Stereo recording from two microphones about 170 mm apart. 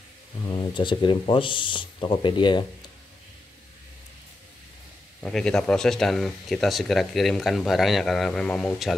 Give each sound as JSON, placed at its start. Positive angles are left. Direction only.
{"t": 0.5, "sound": "speech", "side_deg": 30}
{"t": 5.2, "sound": "speech", "side_deg": 5}